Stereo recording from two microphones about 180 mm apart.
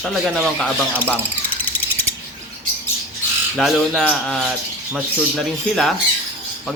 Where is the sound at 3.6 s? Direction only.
Centre (ahead or behind).